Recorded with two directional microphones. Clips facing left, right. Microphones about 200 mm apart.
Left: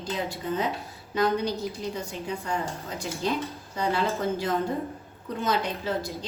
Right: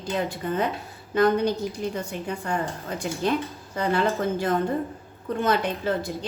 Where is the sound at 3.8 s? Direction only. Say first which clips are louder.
Right 3 dB; 55° right (ahead or behind).